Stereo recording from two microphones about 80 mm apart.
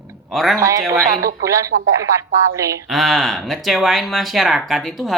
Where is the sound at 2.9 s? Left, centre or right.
Centre.